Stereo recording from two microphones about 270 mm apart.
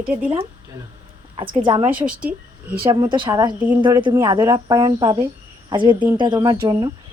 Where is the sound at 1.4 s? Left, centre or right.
Centre.